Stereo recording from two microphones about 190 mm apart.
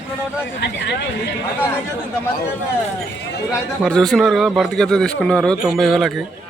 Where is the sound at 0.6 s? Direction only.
60° left (ahead or behind).